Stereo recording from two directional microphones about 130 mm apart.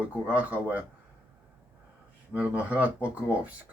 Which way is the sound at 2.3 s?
10° right (ahead or behind).